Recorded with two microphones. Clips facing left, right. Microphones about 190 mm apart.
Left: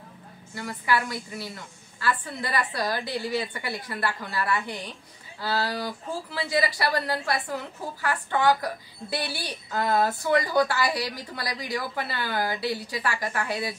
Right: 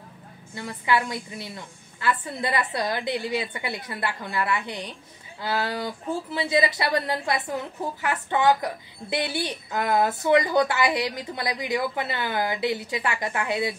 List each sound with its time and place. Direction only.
0.6 s a woman's voice: 20° right (ahead or behind)